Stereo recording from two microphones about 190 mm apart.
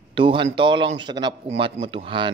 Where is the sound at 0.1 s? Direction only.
25° right (ahead or behind).